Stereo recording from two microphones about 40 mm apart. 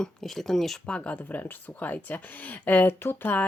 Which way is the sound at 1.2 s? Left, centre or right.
Left.